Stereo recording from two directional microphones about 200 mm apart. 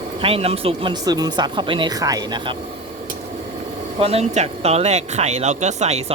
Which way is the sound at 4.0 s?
30° right (ahead or behind).